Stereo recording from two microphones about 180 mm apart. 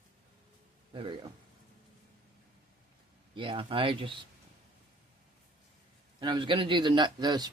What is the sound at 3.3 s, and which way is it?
Speech, 30° right (ahead or behind).